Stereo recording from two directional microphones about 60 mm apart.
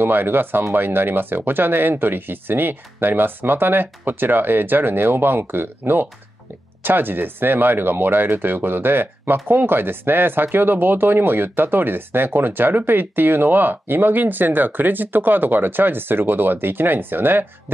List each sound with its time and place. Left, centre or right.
0.0 s speech: right